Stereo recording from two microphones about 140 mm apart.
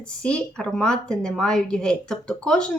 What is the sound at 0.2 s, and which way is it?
A woman's voice, 5° left (ahead or behind).